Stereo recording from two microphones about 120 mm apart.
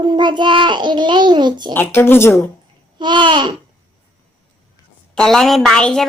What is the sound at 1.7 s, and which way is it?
Speech, 20° left (ahead or behind).